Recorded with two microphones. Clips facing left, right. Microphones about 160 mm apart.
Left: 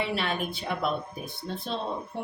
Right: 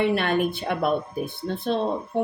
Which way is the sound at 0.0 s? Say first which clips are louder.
Right 8 dB; 55° right (ahead or behind).